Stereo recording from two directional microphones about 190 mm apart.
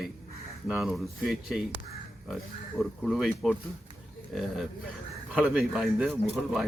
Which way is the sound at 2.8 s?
Centre (ahead or behind).